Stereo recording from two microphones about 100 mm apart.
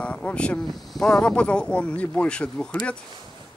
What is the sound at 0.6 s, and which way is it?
Speech, centre (ahead or behind).